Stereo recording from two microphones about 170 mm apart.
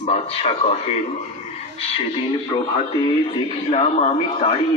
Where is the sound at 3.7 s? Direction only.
35° left (ahead or behind).